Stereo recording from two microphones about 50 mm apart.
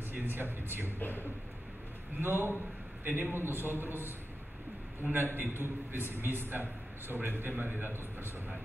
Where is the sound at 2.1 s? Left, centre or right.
Right.